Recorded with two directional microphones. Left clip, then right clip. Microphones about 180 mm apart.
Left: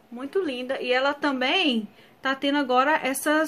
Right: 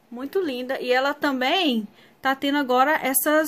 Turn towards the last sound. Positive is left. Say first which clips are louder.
# right 2 dB
turn(degrees=-35)  # may be behind; listen again after turning